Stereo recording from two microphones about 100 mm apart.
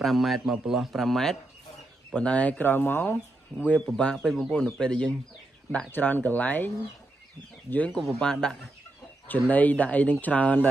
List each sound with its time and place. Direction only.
0.0 s speech: centre (ahead or behind)
3.8 s speech: 5° left (ahead or behind)
7.7 s speech: 15° left (ahead or behind)